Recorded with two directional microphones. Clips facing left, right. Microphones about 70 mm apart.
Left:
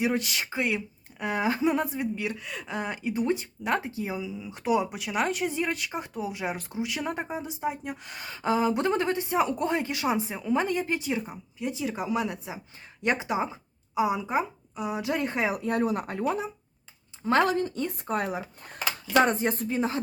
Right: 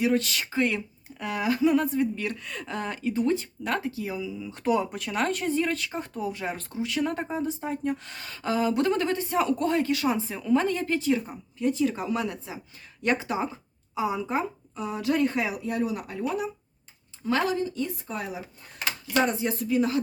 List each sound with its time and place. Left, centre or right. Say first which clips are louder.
0.0 s speech: right 2 dB; centre
1.2 s speech: right 1 dB; left
15.4 s speech: left 2 dB; left
17.2 s speech: left 3 dB; left
17.6 s speech: even; left